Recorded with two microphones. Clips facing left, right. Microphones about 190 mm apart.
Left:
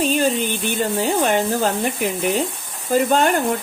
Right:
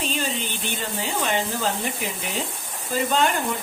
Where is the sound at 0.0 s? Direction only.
50° left (ahead or behind).